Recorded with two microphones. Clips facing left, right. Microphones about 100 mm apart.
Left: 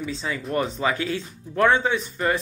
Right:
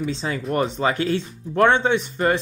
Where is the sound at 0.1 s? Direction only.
30° right (ahead or behind).